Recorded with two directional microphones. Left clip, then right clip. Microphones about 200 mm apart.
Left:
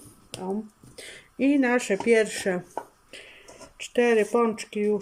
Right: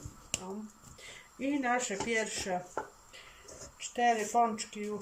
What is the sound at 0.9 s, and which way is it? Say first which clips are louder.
Speech: left 13 dB; 55° left (ahead or behind).